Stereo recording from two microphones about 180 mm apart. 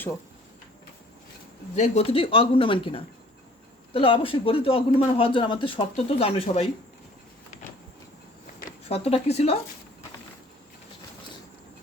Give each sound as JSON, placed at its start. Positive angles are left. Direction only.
{"t": 1.7, "sound": "speech", "side_deg": 35}
{"t": 8.9, "sound": "speech", "side_deg": 35}